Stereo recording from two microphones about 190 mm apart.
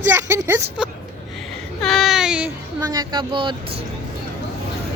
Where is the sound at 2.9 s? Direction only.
20° right (ahead or behind).